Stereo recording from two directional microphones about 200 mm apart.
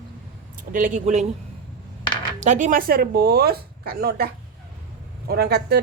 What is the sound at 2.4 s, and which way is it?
A woman's voice, 35° right (ahead or behind).